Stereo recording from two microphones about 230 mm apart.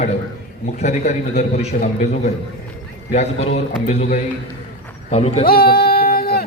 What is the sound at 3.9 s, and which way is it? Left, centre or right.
A man's voice, left.